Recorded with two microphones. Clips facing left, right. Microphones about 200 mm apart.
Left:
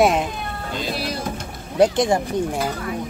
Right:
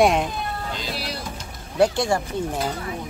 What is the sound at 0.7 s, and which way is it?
Vehicle, 45° left (ahead or behind).